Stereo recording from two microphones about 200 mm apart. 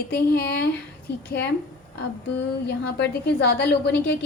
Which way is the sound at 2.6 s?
55° left (ahead or behind).